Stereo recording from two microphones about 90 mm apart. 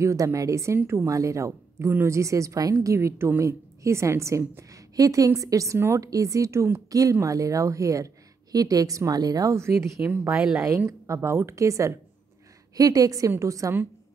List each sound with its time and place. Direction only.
0.0 s a woman's voice: 35° right (ahead or behind)
10.3 s a woman's voice: 5° right (ahead or behind)
10.9 s a woman's voice: 35° right (ahead or behind)